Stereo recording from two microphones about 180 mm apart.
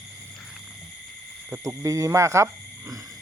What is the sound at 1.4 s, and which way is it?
Speech, 15° right (ahead or behind).